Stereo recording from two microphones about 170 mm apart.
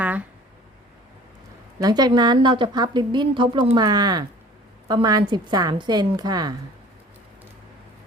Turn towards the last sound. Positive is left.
turn(degrees=-25)  # may be behind; listen again after turning